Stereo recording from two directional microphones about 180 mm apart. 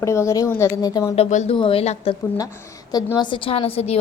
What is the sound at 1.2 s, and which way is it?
Speech, 40° left (ahead or behind).